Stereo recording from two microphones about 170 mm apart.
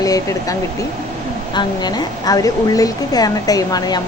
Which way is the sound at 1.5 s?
25° left (ahead or behind).